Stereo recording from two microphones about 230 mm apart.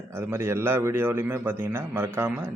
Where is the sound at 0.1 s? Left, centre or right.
Centre.